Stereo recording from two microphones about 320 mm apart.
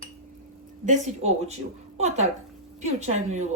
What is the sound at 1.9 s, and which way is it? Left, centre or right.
A woman's voice, right.